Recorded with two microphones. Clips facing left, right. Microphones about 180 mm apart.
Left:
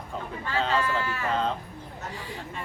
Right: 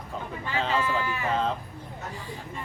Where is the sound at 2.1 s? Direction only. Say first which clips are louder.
Left 1 dB; 70° left (ahead or behind).